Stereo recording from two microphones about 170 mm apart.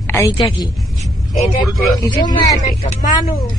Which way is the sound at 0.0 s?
15° left (ahead or behind).